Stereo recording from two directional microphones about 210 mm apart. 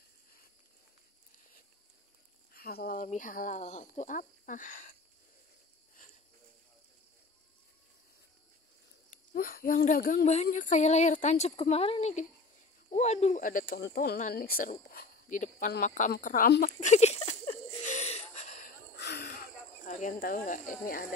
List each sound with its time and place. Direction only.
2.5 s speech: 45° left (ahead or behind)
9.1 s speech: 40° left (ahead or behind)
18.9 s a sound: 50° left (ahead or behind)
20.8 s speech: 40° left (ahead or behind)